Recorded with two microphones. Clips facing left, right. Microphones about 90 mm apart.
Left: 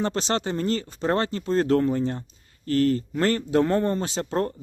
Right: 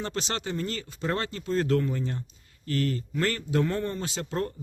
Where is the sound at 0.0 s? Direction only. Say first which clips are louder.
Left 7 dB; 35° left (ahead or behind).